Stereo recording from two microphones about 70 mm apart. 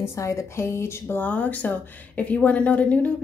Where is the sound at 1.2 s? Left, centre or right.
Left.